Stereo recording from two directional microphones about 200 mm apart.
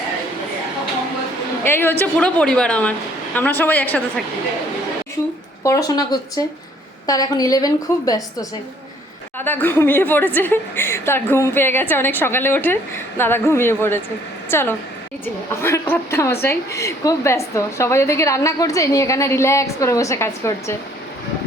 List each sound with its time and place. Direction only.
1.6 s a woman's voice: 10° left (ahead or behind)
5.6 s a woman's voice: 15° left (ahead or behind)